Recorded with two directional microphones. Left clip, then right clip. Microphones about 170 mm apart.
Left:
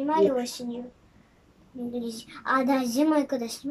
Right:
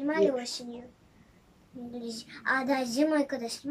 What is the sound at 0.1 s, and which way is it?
Speech, 15° left (ahead or behind).